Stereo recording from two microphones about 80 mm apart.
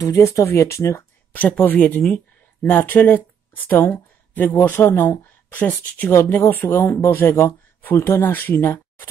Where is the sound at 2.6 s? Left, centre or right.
Left.